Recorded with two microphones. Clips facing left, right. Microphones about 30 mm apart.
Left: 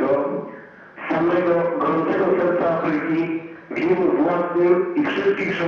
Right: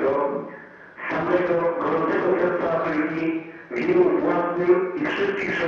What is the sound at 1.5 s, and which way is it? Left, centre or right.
Speech, left.